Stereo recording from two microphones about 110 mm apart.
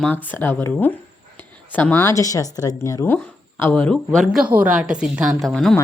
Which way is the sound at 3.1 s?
15° left (ahead or behind).